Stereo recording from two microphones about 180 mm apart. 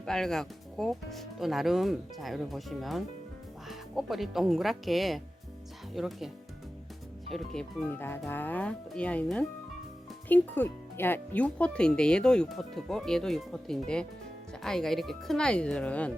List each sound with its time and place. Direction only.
0.0 s speech: 5° left (ahead or behind)